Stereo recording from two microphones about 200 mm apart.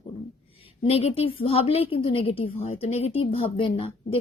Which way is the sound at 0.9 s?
30° left (ahead or behind).